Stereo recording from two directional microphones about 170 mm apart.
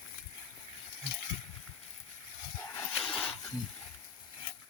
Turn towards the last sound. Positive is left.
turn(degrees=5)  # may be behind; listen again after turning